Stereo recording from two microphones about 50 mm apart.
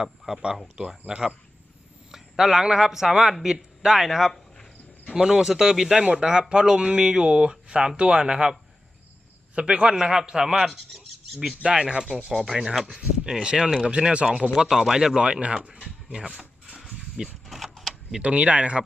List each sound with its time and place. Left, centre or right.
0.0 s speech: centre
9.6 s speech: right; by 11.5 s centre
11.6 s speech: centre
12.3 s speech: centre
13.0 s speech: centre
15.6 s a sound: right
16.4 s a sound: centre
17.4 s power windows: centre
18.2 s speech: right